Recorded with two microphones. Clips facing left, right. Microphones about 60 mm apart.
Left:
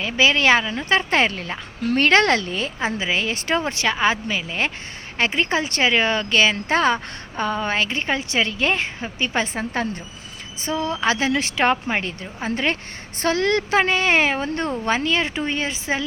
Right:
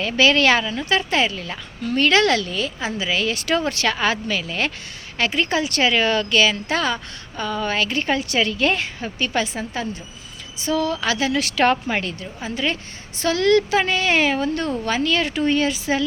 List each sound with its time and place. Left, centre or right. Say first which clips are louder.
0.0 s speech: right 1 dB; centre
0.9 s a woman's voice: left 2 dB; left
10.6 s speech: right 1 dB; left
12.4 s a woman's voice: left 2 dB; left